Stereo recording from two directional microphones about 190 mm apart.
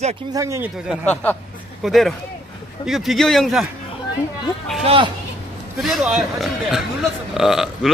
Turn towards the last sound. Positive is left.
turn(degrees=0)  # may be behind; listen again after turning